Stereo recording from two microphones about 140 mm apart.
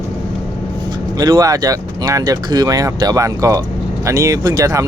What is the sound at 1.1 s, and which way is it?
Speech, 25° right (ahead or behind).